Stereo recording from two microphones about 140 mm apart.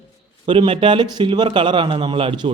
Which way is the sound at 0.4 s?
35° right (ahead or behind).